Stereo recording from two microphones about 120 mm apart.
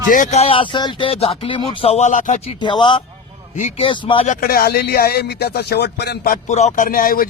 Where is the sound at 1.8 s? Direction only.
65° left (ahead or behind).